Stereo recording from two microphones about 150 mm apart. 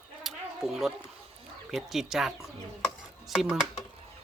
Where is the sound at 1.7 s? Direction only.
Centre (ahead or behind).